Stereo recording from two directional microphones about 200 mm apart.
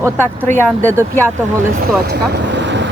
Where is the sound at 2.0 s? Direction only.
55° right (ahead or behind).